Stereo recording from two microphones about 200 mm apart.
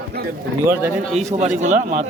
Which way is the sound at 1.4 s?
35° right (ahead or behind).